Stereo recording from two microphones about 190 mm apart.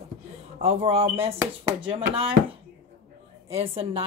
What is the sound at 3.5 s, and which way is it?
Chopping, 30° right (ahead or behind).